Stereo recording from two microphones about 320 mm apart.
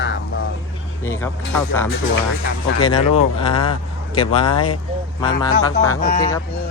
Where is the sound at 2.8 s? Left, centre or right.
Centre.